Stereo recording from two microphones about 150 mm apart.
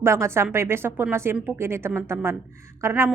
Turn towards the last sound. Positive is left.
turn(degrees=-15)  # may be behind; listen again after turning